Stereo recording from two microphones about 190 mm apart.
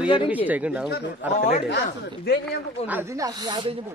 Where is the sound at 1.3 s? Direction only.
40° left (ahead or behind).